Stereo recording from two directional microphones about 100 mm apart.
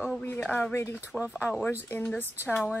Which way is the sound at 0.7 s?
25° left (ahead or behind).